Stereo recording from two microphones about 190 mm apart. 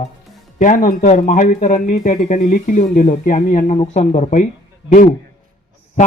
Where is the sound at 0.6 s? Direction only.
45° left (ahead or behind).